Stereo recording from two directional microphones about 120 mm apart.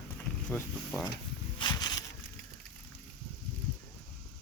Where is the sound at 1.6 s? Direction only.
35° left (ahead or behind).